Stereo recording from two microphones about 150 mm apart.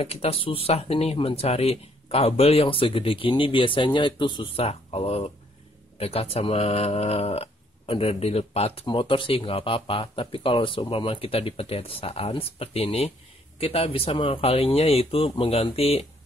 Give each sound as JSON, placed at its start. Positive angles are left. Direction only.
{"t": 0.0, "sound": "speech", "side_deg": 40}